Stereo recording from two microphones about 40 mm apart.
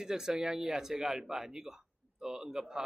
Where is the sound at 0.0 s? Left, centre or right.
Centre.